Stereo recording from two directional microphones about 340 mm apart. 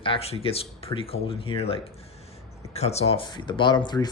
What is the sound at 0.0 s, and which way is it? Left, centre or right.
Speech, centre.